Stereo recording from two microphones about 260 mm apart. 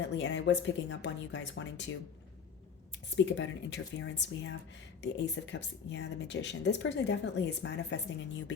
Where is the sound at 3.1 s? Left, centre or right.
Left.